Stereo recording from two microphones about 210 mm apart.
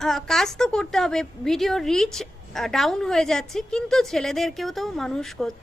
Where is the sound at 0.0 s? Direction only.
Centre (ahead or behind).